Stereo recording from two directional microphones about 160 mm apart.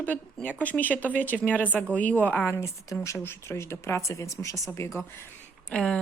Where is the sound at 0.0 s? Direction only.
10° left (ahead or behind).